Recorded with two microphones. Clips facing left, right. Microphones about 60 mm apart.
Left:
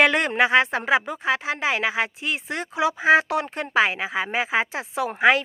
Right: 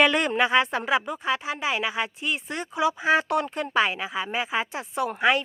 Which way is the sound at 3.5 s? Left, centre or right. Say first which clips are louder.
Left 2 dB; left.